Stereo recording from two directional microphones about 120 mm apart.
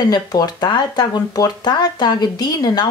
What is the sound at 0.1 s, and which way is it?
Speech, 35° left (ahead or behind).